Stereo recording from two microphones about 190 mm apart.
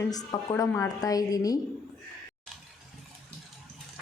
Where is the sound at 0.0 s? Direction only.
20° left (ahead or behind).